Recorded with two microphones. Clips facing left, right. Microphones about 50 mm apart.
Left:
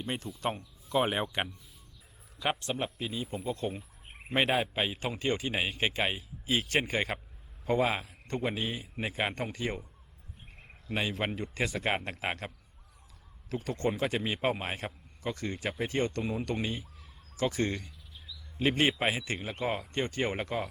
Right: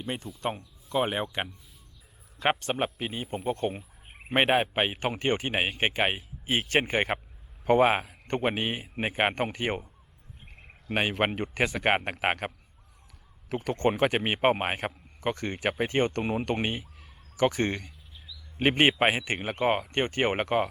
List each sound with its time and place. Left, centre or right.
0.0 s speech: centre
2.4 s a man's voice: right
10.9 s a man's voice: right
13.5 s a man's voice: right
17.0 s a sound: right
18.5 s a man's voice: right